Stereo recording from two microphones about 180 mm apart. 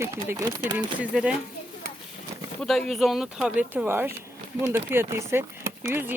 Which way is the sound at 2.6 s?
Centre (ahead or behind).